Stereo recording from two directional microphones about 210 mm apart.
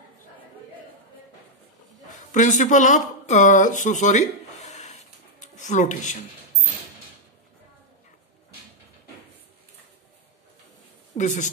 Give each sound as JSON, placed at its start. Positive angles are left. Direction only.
{"t": 2.0, "sound": "speech", "side_deg": 35}
{"t": 11.1, "sound": "a woman's voice", "side_deg": 35}